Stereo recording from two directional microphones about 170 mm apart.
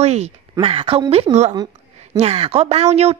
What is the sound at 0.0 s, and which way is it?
Speech, 40° right (ahead or behind).